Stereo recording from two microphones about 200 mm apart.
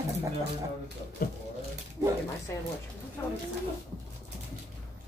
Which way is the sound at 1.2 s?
45° left (ahead or behind).